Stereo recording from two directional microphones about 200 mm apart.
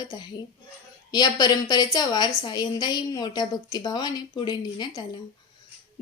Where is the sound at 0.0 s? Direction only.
20° left (ahead or behind).